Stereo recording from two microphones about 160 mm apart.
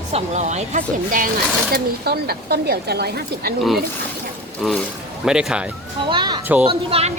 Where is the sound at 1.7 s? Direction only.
80° right.